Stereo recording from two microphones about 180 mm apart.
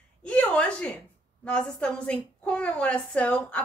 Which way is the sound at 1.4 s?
5° left (ahead or behind).